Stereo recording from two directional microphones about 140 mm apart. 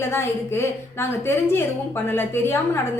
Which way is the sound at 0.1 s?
15° left (ahead or behind).